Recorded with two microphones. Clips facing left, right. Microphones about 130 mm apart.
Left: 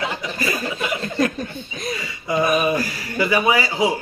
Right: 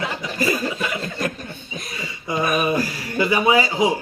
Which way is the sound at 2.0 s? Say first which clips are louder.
Left 2 dB; 20° right (ahead or behind).